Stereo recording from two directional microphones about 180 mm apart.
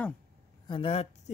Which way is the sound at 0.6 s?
30° left (ahead or behind).